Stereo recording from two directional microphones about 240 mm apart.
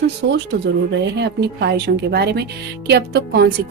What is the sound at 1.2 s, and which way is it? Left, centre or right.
Speech, right.